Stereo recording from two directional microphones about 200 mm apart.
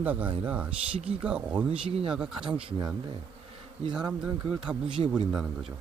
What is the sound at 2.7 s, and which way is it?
Speech, 25° right (ahead or behind).